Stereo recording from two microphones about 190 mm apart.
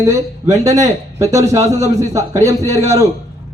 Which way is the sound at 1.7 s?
35° right (ahead or behind).